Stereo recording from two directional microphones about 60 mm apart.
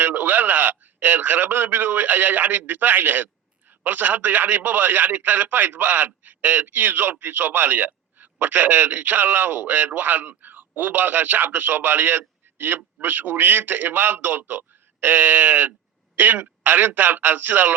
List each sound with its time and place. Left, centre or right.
0.0 s a man's voice: right